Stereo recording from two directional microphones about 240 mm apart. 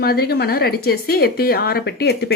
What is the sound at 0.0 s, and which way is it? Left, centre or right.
Speech, left.